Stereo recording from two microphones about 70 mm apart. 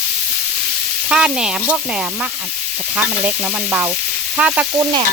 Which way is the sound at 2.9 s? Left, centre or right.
Right.